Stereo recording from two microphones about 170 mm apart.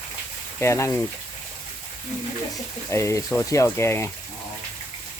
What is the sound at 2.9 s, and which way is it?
Speech, 15° left (ahead or behind).